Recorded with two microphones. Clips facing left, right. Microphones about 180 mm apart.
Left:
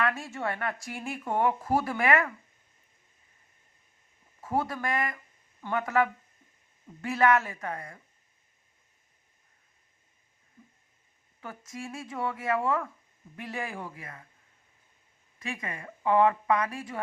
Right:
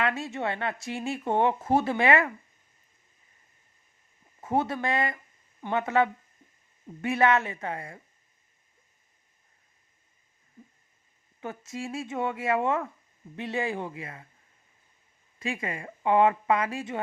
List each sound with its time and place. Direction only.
0.0 s speech: 25° right (ahead or behind)
4.4 s speech: 20° right (ahead or behind)
11.3 s speech: 25° right (ahead or behind)
15.4 s speech: 30° right (ahead or behind)